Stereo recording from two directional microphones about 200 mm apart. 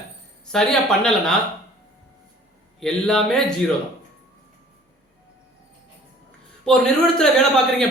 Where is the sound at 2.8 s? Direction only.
5° left (ahead or behind).